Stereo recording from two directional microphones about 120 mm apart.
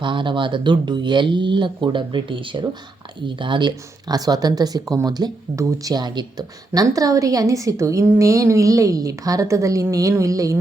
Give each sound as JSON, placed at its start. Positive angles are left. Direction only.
{"t": 0.0, "sound": "speech", "side_deg": -40}